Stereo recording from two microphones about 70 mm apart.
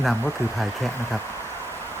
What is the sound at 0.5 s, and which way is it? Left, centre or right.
Speech, centre.